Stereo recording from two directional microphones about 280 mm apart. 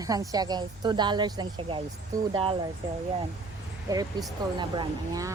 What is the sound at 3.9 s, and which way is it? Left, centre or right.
A woman's voice, centre.